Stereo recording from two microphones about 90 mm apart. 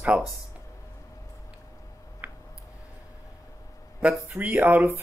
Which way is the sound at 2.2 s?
20° right (ahead or behind).